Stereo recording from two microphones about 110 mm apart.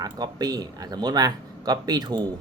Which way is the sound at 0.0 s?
35° right (ahead or behind).